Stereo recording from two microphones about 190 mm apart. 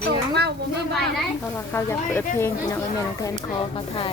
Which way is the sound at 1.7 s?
10° left (ahead or behind).